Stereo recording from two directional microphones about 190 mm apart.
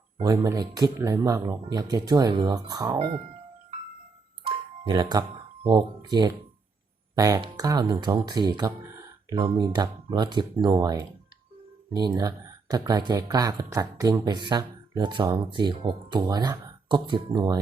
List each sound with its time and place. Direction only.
0.2 s speech: 20° right (ahead or behind)
4.4 s music: 25° right (ahead or behind)
5.6 s speech: 20° right (ahead or behind)